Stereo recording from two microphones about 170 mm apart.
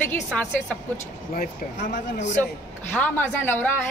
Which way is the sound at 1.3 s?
60° left (ahead or behind).